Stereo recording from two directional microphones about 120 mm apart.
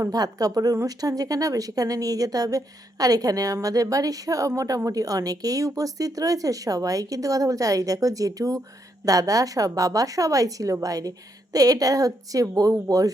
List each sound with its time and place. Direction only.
0.0 s a woman's voice: 30° right (ahead or behind)